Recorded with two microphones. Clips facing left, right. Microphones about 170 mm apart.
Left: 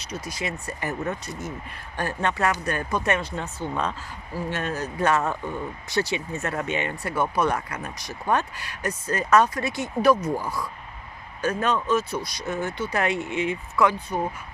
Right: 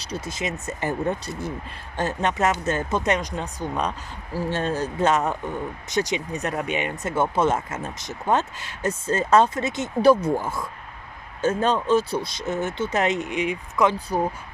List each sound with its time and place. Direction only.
0.0 s speech: 30° right (ahead or behind)
2.0 s speech: 20° right (ahead or behind)
4.4 s speech: 30° right (ahead or behind)